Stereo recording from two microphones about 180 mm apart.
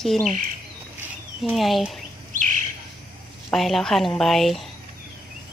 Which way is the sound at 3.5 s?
Centre (ahead or behind).